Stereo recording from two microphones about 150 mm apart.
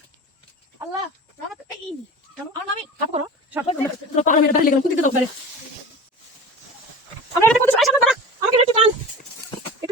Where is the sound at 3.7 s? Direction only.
50° left (ahead or behind).